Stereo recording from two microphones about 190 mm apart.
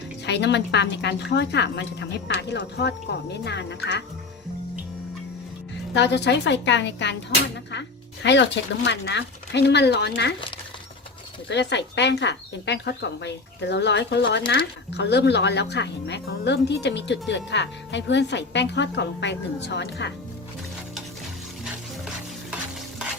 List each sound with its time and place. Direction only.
0.3 s speech: 65° left (ahead or behind)
5.9 s speech: 65° left (ahead or behind)
11.4 s speech: 65° left (ahead or behind)